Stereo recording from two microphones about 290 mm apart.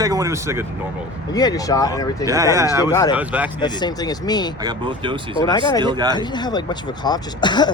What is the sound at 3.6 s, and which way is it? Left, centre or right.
Speech, centre.